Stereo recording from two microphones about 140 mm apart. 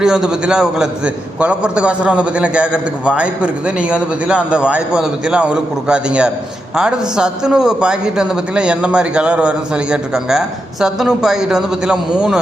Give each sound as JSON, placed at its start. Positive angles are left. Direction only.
{"t": 0.0, "sound": "a man's voice", "side_deg": -5}